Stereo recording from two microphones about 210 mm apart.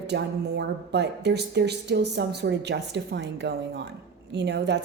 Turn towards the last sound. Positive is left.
turn(degrees=-55)  # may be behind; listen again after turning